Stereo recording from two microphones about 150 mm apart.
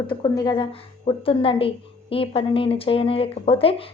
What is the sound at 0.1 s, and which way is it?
A woman's voice, 30° left (ahead or behind).